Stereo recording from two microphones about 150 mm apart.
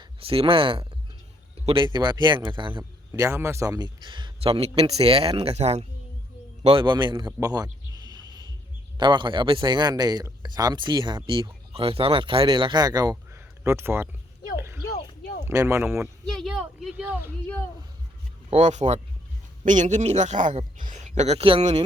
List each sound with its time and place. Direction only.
0.0 s a man's voice: 40° right (ahead or behind)
3.1 s a man's voice: 20° right (ahead or behind); by 5.8 s 45° right (ahead or behind)
6.7 s a man's voice: 30° right (ahead or behind)
7.3 s a sound: 25° right (ahead or behind)
9.0 s a man's voice: 30° right (ahead or behind); by 14.1 s 15° right (ahead or behind)
15.4 s speech: 15° right (ahead or behind)
16.4 s speech: centre (ahead or behind)
17.1 s speech: 15° right (ahead or behind)
18.5 s a man's voice: 50° right (ahead or behind)